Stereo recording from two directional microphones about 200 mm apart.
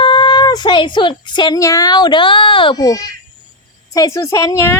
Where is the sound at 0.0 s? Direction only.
25° left (ahead or behind).